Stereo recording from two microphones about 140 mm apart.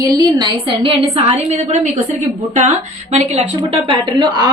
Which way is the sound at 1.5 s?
55° right (ahead or behind).